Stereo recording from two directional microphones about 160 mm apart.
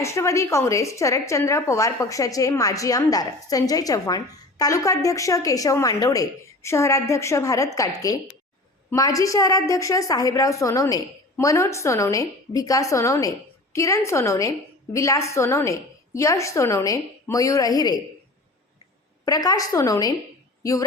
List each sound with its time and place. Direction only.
0.0 s a woman's voice: 20° left (ahead or behind)
19.2 s a woman's voice: 25° left (ahead or behind)